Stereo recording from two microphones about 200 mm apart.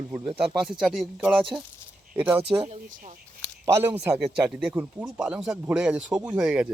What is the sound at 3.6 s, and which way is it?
Speech, 15° right (ahead or behind).